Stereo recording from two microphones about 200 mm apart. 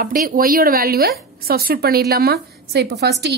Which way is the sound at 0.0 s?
45° right (ahead or behind).